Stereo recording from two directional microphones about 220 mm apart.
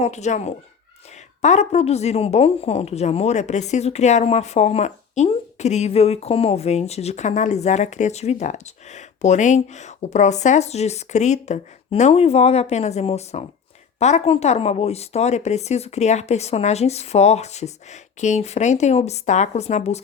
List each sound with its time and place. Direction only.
0.0 s speech: 30° left (ahead or behind)